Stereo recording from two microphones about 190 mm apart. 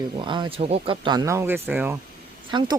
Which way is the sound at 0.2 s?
25° right (ahead or behind).